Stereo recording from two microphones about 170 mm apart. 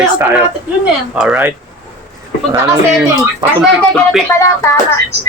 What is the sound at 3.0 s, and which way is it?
Speech, 20° right (ahead or behind).